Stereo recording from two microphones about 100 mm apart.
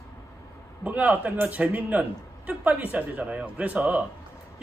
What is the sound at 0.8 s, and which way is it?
A man's voice, 15° right (ahead or behind).